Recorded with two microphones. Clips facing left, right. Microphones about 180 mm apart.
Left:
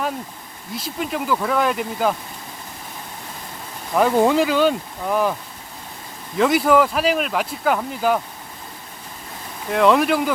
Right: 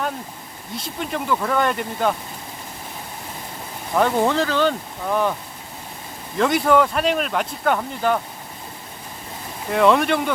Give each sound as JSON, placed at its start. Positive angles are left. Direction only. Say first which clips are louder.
{"t": 0.7, "sound": "speech", "louder": "left 2 dB", "side_deg": 0}
{"t": 3.9, "sound": "speech", "louder": "left 3 dB", "side_deg": 10}
{"t": 9.6, "sound": "speech", "louder": "left 1 dB", "side_deg": 0}